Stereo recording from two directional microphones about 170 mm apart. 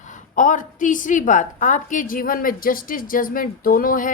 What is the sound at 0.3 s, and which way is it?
A woman's voice, 50° left (ahead or behind).